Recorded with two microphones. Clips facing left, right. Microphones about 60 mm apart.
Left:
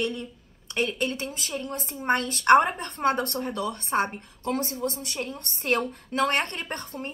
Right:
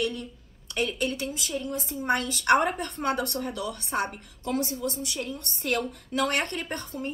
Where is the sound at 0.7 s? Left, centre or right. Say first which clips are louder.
Left 1 dB; left.